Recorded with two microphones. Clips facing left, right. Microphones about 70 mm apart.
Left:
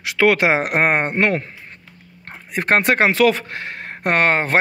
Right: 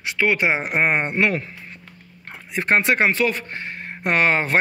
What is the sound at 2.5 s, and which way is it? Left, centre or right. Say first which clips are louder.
Speech: left 2 dB; left.